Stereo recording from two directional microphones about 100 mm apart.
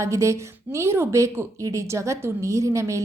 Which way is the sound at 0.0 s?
30° right (ahead or behind).